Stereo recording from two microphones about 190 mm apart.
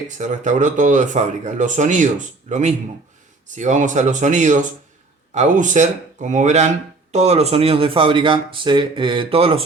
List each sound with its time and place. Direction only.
0.2 s speech: 40° right (ahead or behind)